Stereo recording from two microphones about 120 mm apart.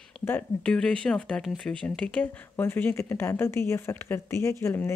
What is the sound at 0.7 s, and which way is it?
Speech, 5° left (ahead or behind).